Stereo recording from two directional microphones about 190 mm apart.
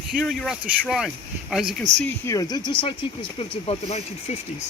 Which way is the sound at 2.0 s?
15° left (ahead or behind).